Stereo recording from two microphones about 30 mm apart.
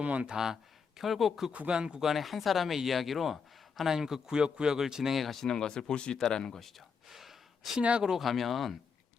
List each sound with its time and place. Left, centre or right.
0.0 s speech: right
0.3 s speech: centre
1.6 s speech: right
2.0 s speech: centre
3.8 s speech: centre
4.4 s speech: right
5.1 s speech: centre
5.5 s speech: left
6.6 s speech: centre
7.1 s gasp: centre
7.8 s speech: right
8.2 s speech: centre